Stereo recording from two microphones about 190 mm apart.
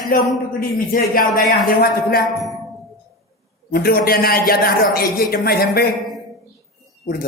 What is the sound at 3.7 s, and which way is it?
A man's voice, 50° left (ahead or behind).